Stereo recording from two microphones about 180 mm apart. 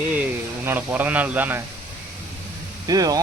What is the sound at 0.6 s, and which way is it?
Speech, 10° right (ahead or behind).